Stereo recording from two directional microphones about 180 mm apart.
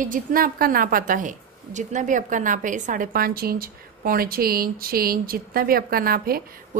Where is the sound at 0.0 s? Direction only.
50° right (ahead or behind).